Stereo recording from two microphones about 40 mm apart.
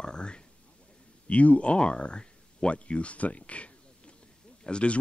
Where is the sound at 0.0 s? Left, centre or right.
Left.